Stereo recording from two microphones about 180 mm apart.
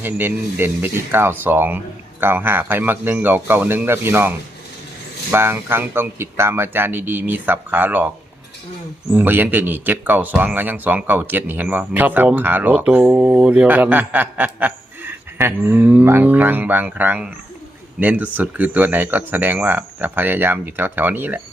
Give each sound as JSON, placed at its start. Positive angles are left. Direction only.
{"t": 0.0, "sound": "speech", "side_deg": -10}
{"t": 9.1, "sound": "speech", "side_deg": -10}